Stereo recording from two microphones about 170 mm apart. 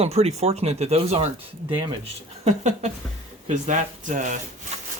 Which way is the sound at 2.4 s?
40° right (ahead or behind).